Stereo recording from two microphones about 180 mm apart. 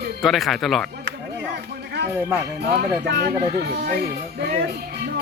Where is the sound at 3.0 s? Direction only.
60° right (ahead or behind).